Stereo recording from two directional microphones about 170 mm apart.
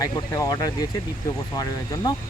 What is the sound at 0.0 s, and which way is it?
Speech, 20° left (ahead or behind).